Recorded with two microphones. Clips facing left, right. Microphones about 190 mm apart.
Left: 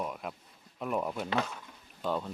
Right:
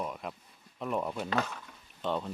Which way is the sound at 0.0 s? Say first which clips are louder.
Even; centre (ahead or behind).